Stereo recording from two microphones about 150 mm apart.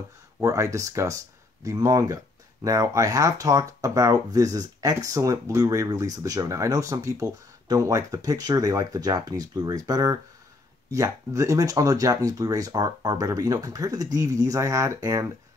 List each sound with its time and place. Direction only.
0.4 s speech: 20° right (ahead or behind)